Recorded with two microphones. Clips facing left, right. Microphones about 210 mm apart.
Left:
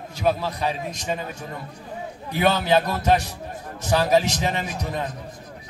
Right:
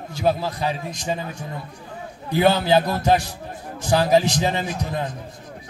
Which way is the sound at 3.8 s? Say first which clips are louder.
Right 2 dB; 30° right (ahead or behind).